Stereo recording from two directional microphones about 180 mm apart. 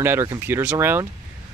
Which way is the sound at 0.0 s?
15° right (ahead or behind).